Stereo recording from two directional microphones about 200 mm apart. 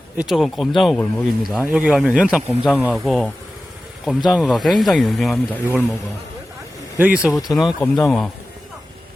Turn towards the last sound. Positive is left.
turn(degrees=0)  # may be behind; listen again after turning